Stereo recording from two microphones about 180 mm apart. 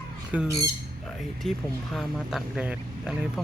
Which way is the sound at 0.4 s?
15° right (ahead or behind).